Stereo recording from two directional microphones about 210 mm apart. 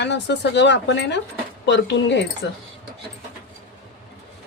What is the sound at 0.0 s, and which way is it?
Speech, 55° left (ahead or behind).